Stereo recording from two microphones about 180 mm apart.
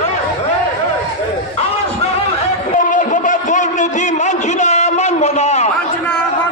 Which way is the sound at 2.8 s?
45° left (ahead or behind).